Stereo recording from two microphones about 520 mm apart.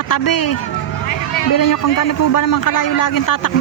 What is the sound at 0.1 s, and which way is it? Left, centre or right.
Speech, left.